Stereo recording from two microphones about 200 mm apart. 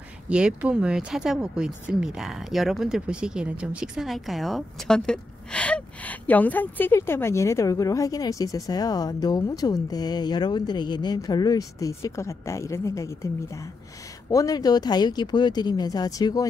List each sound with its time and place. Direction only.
0.3 s speech: 5° right (ahead or behind); by 16.4 s 20° left (ahead or behind)